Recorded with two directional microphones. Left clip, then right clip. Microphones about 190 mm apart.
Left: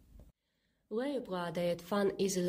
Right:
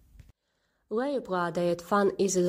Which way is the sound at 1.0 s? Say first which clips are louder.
Right 8 dB; 30° right (ahead or behind).